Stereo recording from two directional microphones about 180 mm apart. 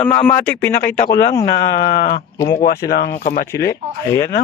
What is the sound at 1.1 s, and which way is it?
Speech, 20° left (ahead or behind).